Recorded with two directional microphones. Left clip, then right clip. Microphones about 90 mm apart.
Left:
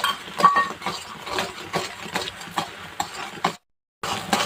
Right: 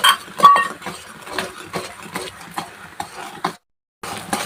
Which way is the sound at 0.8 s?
10° left (ahead or behind).